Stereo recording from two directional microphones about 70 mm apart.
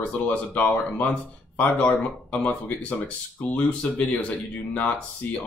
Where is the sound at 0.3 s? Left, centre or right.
Left.